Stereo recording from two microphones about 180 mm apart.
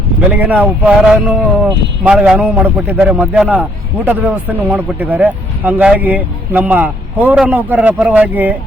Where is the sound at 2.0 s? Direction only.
5° right (ahead or behind).